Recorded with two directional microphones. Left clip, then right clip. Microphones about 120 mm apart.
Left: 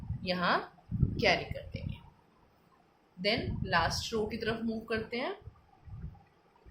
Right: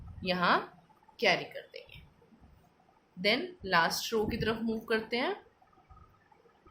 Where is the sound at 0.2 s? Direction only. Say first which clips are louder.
Right 2 dB; 25° right (ahead or behind).